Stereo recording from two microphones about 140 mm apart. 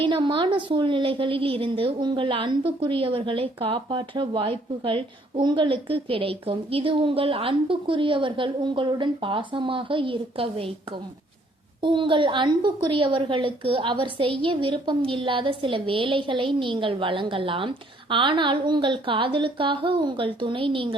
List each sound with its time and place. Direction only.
0.0 s a woman's voice: 35° right (ahead or behind)
11.8 s a woman's voice: 35° right (ahead or behind)